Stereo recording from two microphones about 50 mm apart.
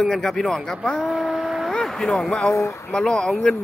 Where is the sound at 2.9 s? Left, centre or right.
Centre.